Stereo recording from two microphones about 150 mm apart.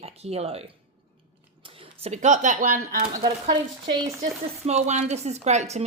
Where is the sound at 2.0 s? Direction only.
50° right (ahead or behind).